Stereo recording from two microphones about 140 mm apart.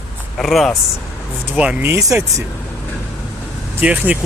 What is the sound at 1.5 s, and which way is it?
Speech, 10° right (ahead or behind).